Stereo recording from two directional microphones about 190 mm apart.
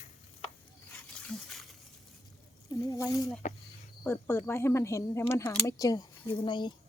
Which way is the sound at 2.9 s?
15° left (ahead or behind).